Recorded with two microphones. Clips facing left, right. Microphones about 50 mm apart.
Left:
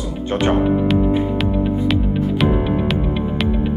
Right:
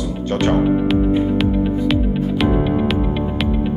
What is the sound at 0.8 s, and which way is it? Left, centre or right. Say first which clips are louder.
Music: right 1 dB; centre.